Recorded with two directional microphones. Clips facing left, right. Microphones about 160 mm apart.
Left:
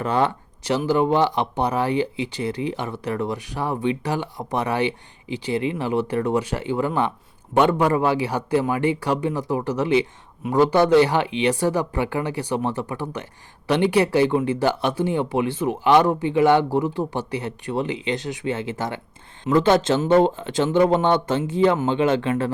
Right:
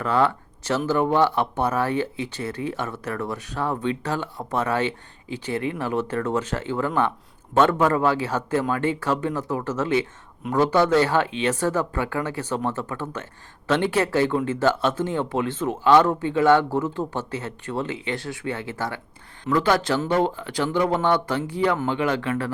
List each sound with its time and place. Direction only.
0.0 s speech: 20° left (ahead or behind)